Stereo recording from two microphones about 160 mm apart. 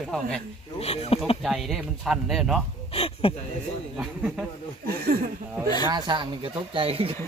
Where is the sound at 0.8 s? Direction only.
40° left (ahead or behind).